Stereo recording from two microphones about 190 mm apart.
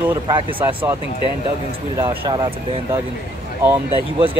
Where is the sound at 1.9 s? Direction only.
15° right (ahead or behind).